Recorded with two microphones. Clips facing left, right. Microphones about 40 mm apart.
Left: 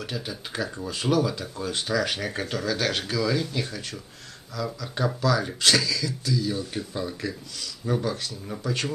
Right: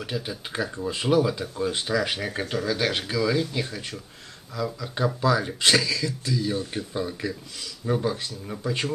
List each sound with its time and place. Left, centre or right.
0.0 s speech: centre; by 6.8 s right
6.9 s speech: centre